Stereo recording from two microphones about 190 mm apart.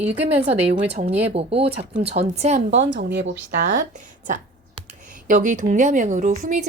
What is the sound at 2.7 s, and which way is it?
Speech, 65° right (ahead or behind).